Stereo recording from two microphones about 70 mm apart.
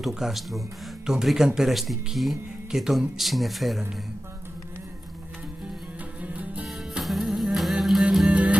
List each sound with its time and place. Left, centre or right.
0.0 s speech: centre
6.2 s music: right
6.6 s music: centre
8.3 s music: centre